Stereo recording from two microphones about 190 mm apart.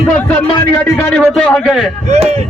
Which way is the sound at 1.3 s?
Centre (ahead or behind).